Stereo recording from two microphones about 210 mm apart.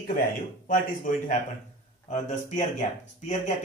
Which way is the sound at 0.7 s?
40° left (ahead or behind).